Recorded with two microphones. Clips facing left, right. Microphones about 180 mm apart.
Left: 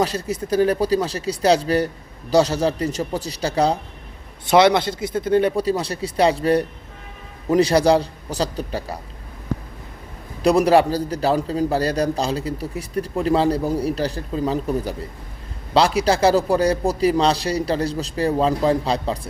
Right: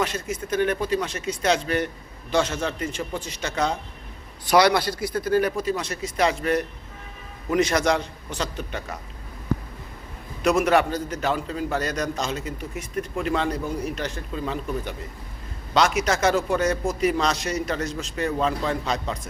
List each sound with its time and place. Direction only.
0.0 s a man's voice: 35° left (ahead or behind)
4.4 s a man's voice: 25° left (ahead or behind)
10.4 s a man's voice: 35° left (ahead or behind)